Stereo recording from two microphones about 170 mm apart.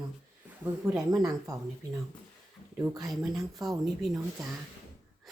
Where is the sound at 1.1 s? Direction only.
20° right (ahead or behind).